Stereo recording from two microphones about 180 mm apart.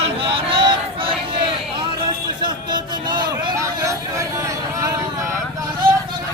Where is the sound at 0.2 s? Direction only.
30° right (ahead or behind).